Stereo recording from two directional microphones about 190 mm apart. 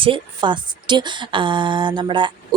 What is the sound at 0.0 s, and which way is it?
Speech, 25° right (ahead or behind).